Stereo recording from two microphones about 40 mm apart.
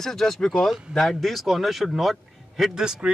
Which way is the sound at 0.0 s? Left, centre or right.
Centre.